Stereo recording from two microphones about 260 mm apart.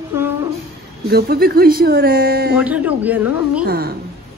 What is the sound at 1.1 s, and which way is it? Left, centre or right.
Speech, right.